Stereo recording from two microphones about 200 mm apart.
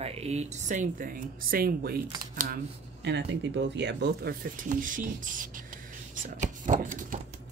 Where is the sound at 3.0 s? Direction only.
60° right (ahead or behind); by 7.2 s 40° right (ahead or behind).